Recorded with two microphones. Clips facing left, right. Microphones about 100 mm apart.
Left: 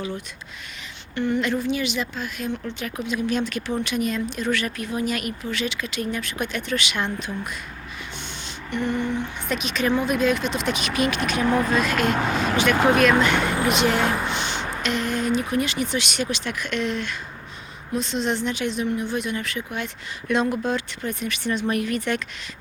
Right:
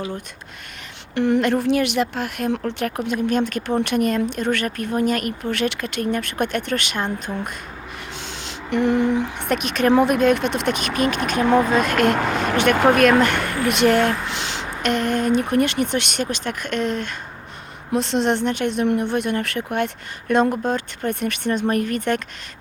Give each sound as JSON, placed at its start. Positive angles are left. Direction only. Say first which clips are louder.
{"t": 1.1, "sound": "a sound", "louder": "right 5 dB", "side_deg": -90}
{"t": 1.4, "sound": "speech", "louder": "right 5 dB", "side_deg": -65}
{"t": 8.4, "sound": "a sound", "louder": "right 7 dB", "side_deg": -90}
{"t": 9.4, "sound": "speech", "louder": "right 5 dB", "side_deg": -60}
{"t": 14.3, "sound": "a sound", "louder": "left 1 dB", "side_deg": -90}
{"t": 14.8, "sound": "speech", "louder": "right 6 dB", "side_deg": -55}
{"t": 17.9, "sound": "speech", "louder": "right 5 dB", "side_deg": -70}
{"t": 20.2, "sound": "speech", "louder": "right 4 dB", "side_deg": -45}
{"t": 21.1, "sound": "speech", "louder": "right 4 dB", "side_deg": -60}